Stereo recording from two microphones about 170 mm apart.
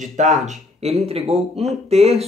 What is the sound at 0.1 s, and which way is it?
A man's voice, 45° right (ahead or behind).